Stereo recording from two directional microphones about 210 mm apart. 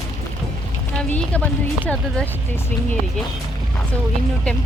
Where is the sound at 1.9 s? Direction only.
5° left (ahead or behind).